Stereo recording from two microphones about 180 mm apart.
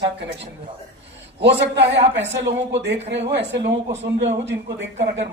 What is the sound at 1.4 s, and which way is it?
A man's voice, 75° right (ahead or behind).